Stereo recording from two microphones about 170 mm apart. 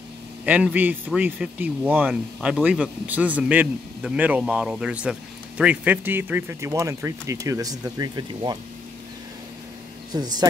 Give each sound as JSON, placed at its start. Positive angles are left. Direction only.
{"t": 0.5, "sound": "a man's voice", "side_deg": -10}
{"t": 10.1, "sound": "speech", "side_deg": -25}